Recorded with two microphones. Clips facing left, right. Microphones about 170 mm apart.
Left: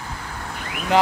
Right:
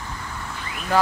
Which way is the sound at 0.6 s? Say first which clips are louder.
Left 3 dB; 65° left (ahead or behind).